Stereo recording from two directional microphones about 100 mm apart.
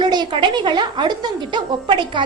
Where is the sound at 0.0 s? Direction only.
45° right (ahead or behind).